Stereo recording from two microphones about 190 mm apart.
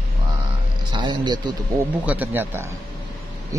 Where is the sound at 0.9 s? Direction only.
25° right (ahead or behind).